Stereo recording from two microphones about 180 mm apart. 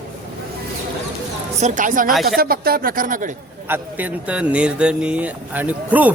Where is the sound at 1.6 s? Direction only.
45° right (ahead or behind).